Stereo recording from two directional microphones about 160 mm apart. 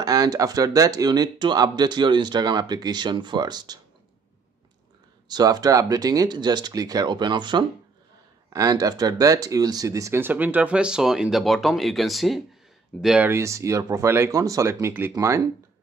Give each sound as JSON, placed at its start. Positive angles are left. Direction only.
{"t": 0.0, "sound": "speech", "side_deg": -25}
{"t": 5.3, "sound": "speech", "side_deg": -25}
{"t": 13.3, "sound": "speech", "side_deg": -20}